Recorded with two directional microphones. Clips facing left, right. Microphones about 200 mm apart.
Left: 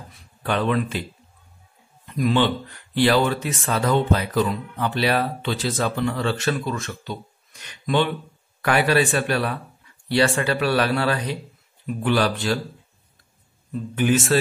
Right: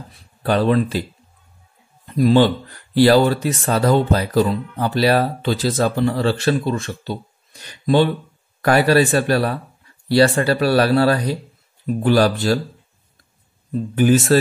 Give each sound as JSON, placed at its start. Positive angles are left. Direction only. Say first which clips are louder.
{"t": 0.4, "sound": "speech", "louder": "right 6 dB", "side_deg": -35}
{"t": 2.0, "sound": "speech", "louder": "right 6 dB", "side_deg": -35}
{"t": 13.7, "sound": "speech", "louder": "right 5 dB", "side_deg": -40}